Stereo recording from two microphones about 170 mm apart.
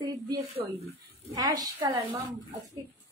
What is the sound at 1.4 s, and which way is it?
Speech, 25° right (ahead or behind).